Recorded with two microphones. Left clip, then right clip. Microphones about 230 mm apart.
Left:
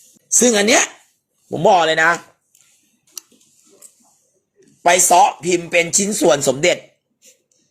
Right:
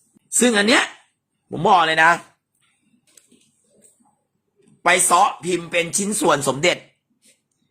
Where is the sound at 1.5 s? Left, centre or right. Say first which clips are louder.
Left 2 dB; centre.